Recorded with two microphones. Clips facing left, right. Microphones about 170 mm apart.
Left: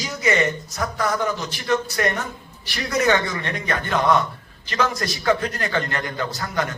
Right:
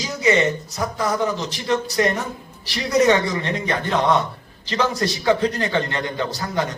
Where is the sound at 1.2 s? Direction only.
30° right (ahead or behind).